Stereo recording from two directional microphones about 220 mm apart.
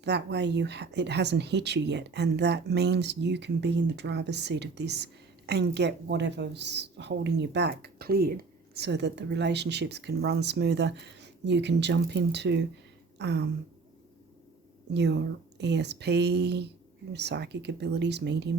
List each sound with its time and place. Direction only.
0.0 s a woman's voice: 50° right (ahead or behind)
13.1 s a sound: 50° right (ahead or behind)
14.9 s a woman's voice: 50° right (ahead or behind)